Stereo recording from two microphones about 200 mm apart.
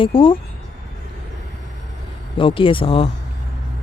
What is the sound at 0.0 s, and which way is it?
Speech, 25° left (ahead or behind).